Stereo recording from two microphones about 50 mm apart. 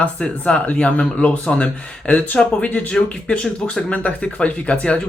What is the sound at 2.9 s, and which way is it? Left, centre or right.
Speech, centre.